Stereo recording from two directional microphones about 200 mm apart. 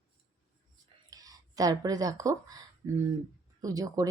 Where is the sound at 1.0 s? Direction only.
20° right (ahead or behind).